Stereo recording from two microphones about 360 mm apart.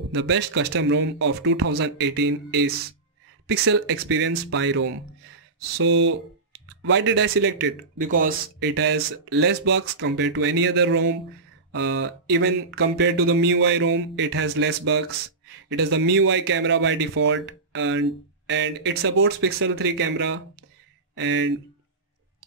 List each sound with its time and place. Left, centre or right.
0.1 s speech: right